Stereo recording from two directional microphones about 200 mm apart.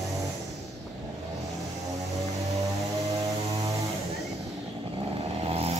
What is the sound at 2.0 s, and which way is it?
Vehicle, 15° right (ahead or behind).